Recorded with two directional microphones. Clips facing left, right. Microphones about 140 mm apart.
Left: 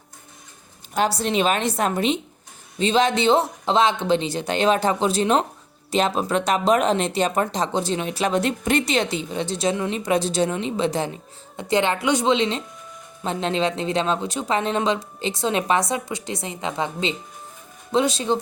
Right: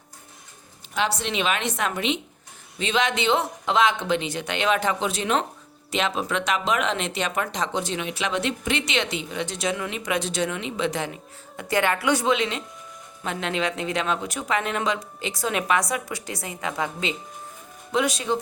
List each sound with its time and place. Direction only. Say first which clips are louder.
0.9 s speech: left 5 dB; 40° left (ahead or behind)
11.5 s a woman's voice: left 2 dB; 25° left (ahead or behind)